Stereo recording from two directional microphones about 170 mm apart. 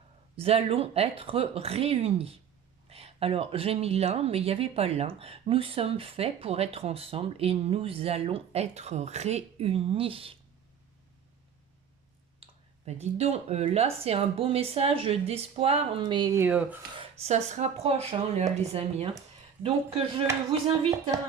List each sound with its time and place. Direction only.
0.3 s speech: 35° right (ahead or behind)
12.4 s speech: 40° right (ahead or behind); by 16.6 s 10° right (ahead or behind)
16.9 s speech: 35° right (ahead or behind)